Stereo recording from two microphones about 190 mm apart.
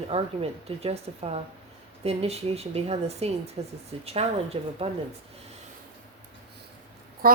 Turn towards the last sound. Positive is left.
turn(degrees=-50)  # may be behind; listen again after turning